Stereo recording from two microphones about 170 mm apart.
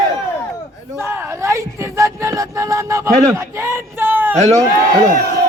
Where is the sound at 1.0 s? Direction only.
15° right (ahead or behind).